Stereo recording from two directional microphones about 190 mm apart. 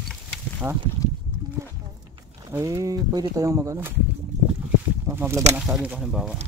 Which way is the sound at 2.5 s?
15° right (ahead or behind).